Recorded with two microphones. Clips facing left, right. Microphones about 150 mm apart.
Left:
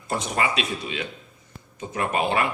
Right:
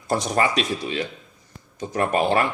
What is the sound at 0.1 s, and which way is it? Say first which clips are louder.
Speech: right 4 dB; 40° right (ahead or behind).